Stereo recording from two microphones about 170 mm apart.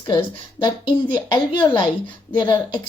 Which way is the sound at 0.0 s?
30° left (ahead or behind).